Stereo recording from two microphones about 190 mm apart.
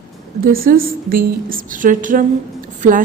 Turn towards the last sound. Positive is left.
turn(degrees=-45)  # may be behind; listen again after turning